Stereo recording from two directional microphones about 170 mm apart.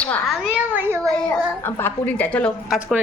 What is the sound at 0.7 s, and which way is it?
Speech, 15° right (ahead or behind).